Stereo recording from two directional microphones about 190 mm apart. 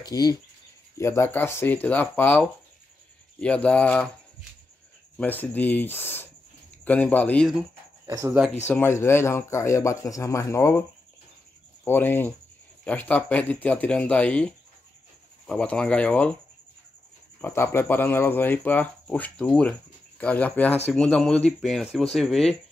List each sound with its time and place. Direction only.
0.0 s speech: 20° left (ahead or behind)
5.1 s speech: 10° left (ahead or behind)
8.1 s speech: 15° right (ahead or behind)
8.6 s speech: 10° left (ahead or behind)
11.8 s speech: 10° left (ahead or behind)
17.4 s speech: 10° left (ahead or behind)